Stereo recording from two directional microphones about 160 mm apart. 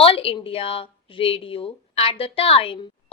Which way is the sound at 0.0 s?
35° left (ahead or behind).